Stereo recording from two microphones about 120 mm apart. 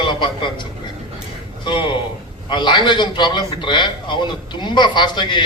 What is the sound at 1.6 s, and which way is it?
A man's voice, 40° left (ahead or behind).